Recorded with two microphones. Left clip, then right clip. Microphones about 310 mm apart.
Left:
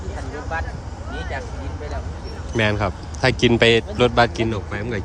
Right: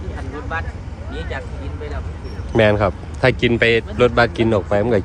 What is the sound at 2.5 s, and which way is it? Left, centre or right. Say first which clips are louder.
A man's voice: right 6 dB; centre.